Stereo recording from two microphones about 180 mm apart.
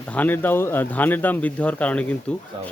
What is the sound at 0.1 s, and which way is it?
Speech, 10° left (ahead or behind).